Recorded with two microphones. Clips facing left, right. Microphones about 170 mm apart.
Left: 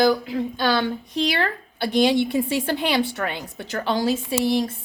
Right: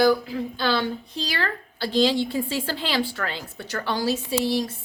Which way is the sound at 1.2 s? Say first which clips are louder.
Left 4 dB; 20° left (ahead or behind).